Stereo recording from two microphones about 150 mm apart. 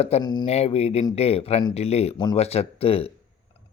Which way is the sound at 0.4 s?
45° left (ahead or behind).